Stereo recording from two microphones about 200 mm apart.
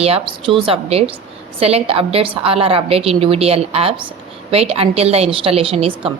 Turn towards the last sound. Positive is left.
turn(degrees=-30)  # may be behind; listen again after turning